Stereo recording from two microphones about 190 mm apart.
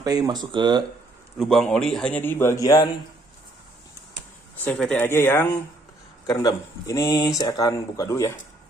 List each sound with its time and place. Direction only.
0.0 s speech: 20° right (ahead or behind)
1.4 s speech: centre (ahead or behind); by 2.9 s 20° left (ahead or behind)
4.6 s speech: 5° left (ahead or behind)